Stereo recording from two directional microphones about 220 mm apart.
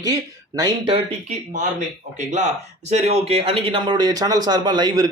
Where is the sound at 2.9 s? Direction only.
30° right (ahead or behind).